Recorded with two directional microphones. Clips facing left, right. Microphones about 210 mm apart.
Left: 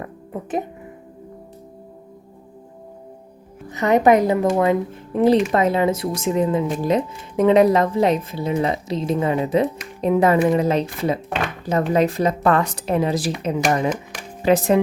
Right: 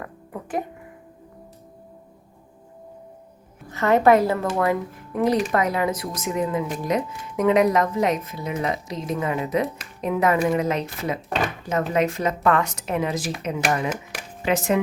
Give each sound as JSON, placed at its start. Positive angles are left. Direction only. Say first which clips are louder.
{"t": 3.7, "sound": "speech", "louder": "left 2 dB", "side_deg": 20}
{"t": 13.9, "sound": "a sound", "louder": "left 3 dB", "side_deg": -5}
{"t": 14.4, "sound": "speech", "louder": "left 5 dB", "side_deg": 35}